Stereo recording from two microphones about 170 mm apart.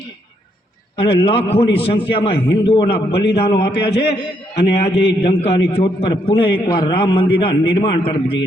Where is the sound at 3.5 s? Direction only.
70° left (ahead or behind).